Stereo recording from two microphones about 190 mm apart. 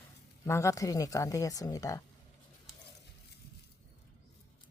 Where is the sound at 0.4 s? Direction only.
15° left (ahead or behind).